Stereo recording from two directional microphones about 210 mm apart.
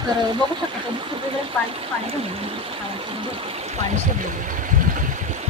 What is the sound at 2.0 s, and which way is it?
Speech, 25° right (ahead or behind).